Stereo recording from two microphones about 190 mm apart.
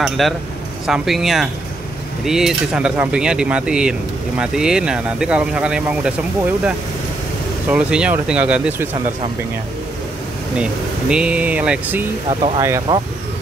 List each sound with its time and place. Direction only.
0.2 s speech: centre (ahead or behind)
7.7 s speech: 5° right (ahead or behind)
10.6 s speech: 5° right (ahead or behind)
12.3 s speech: 30° right (ahead or behind)
12.9 s speech: 15° right (ahead or behind)